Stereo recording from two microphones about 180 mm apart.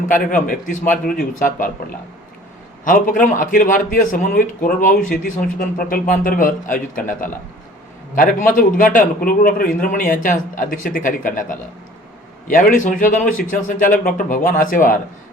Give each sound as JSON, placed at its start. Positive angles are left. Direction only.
{"t": 0.1, "sound": "a man's voice", "side_deg": 50}
{"t": 2.8, "sound": "a man's voice", "side_deg": 45}